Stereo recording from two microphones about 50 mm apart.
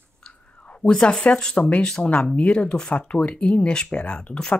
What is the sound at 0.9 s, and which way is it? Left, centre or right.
Speech, centre.